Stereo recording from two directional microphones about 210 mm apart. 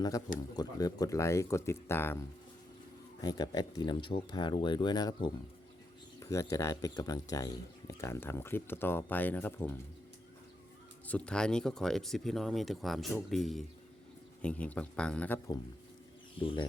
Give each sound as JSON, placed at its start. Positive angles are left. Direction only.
{"t": 0.5, "sound": "speech", "side_deg": 20}
{"t": 11.0, "sound": "speech", "side_deg": 5}
{"t": 16.4, "sound": "speech", "side_deg": 25}